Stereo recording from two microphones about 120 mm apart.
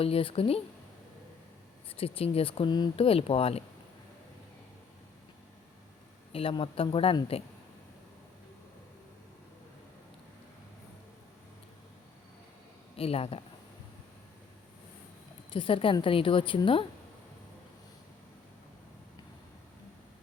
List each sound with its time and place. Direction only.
0.0 s a woman's voice: 50° left (ahead or behind)
1.9 s a woman's voice: 50° left (ahead or behind)
3.0 s a woman's voice: 50° left (ahead or behind)
6.3 s a woman's voice: 50° left (ahead or behind)
13.0 s a woman's voice: 55° left (ahead or behind)
15.4 s a woman's voice: 45° left (ahead or behind)